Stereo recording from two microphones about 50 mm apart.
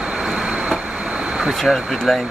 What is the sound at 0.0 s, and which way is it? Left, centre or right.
Vehicle, centre.